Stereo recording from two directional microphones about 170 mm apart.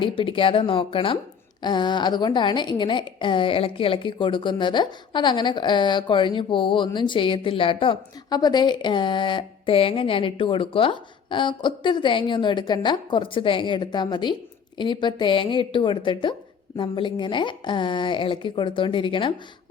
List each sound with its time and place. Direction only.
0.0 s a woman's voice: 30° left (ahead or behind)